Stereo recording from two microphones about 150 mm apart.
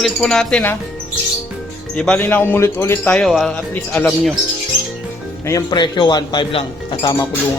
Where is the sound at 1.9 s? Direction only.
5° left (ahead or behind).